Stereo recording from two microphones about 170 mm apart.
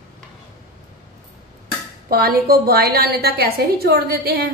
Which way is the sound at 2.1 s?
60° right (ahead or behind).